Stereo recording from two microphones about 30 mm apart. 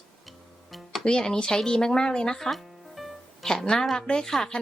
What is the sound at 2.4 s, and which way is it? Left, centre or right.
Music, centre.